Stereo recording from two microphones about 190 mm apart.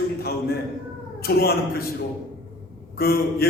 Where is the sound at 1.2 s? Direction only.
55° left (ahead or behind).